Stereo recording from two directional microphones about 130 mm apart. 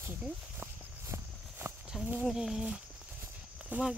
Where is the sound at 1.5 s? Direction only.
15° right (ahead or behind).